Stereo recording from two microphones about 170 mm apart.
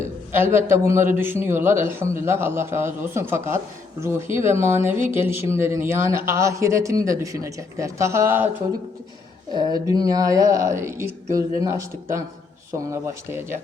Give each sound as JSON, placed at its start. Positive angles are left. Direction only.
{"t": 0.0, "sound": "a man's voice", "side_deg": -15}
{"t": 9.5, "sound": "a man's voice", "side_deg": -25}